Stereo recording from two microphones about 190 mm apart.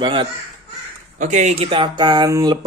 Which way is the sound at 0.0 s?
25° right (ahead or behind).